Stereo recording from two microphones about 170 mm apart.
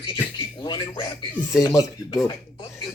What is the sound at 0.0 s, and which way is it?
Speech, 25° left (ahead or behind).